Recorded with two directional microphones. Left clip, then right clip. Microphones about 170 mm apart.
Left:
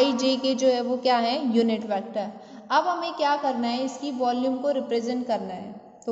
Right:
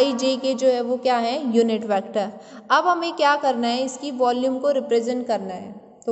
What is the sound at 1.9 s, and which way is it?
A woman's voice, 40° right (ahead or behind).